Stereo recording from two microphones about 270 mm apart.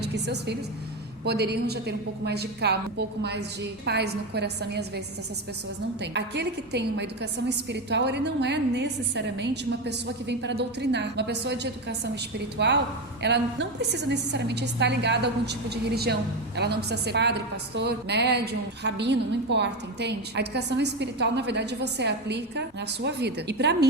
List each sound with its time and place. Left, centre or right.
0.0 s a woman's voice: right
6.0 s a woman's voice: right